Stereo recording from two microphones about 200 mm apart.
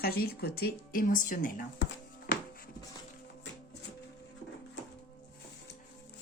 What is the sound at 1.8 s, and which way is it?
Music, 50° left (ahead or behind).